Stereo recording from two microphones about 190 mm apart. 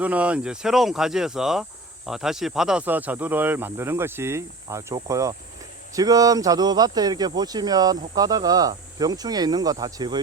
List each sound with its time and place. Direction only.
0.0 s speech: 5° right (ahead or behind)